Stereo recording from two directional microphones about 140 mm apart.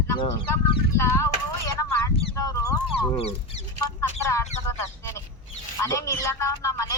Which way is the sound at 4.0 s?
20° left (ahead or behind).